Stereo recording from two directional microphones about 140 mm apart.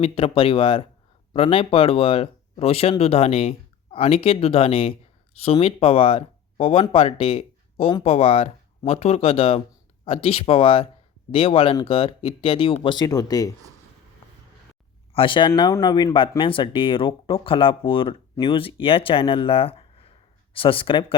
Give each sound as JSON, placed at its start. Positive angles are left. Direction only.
{"t": 0.0, "sound": "speech", "side_deg": 40}
{"t": 15.1, "sound": "speech", "side_deg": 35}